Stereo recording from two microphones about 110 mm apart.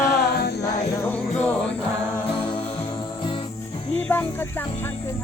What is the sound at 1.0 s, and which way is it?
Music, 15° left (ahead or behind).